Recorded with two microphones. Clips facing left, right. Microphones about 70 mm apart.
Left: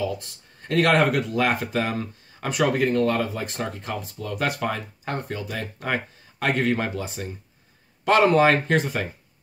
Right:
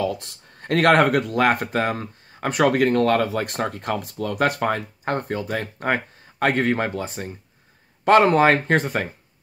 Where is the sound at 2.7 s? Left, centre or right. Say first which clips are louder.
Right 3 dB; right.